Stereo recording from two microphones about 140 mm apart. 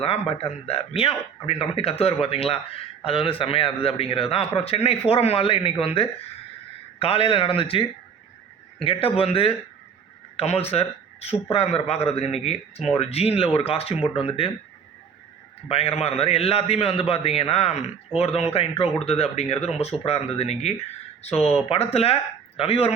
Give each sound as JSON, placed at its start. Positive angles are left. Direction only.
{"t": 0.0, "sound": "a man's voice", "side_deg": 45}
{"t": 15.7, "sound": "a man's voice", "side_deg": 45}